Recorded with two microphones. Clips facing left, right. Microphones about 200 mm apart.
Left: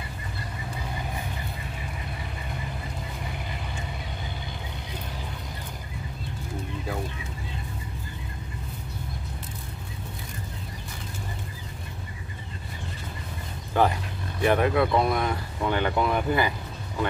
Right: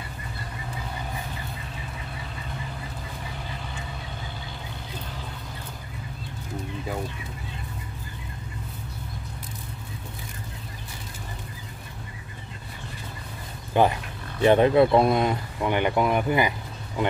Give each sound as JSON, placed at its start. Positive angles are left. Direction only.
{"t": 13.7, "sound": "speech", "side_deg": -20}